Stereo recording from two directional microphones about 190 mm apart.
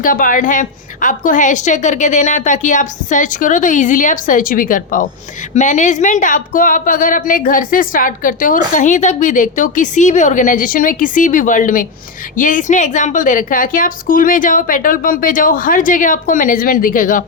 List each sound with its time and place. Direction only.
0.0 s speech: 45° left (ahead or behind)